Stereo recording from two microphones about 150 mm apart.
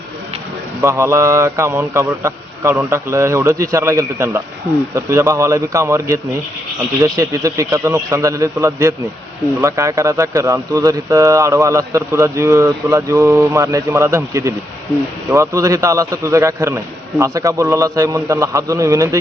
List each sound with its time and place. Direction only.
0.8 s speech: 20° right (ahead or behind)